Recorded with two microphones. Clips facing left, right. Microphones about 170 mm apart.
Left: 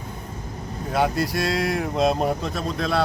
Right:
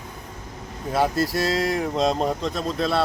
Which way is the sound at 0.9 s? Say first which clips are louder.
Right 1 dB; centre (ahead or behind).